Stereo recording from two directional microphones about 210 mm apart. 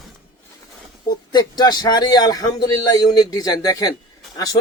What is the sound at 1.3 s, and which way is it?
Speech, 20° left (ahead or behind).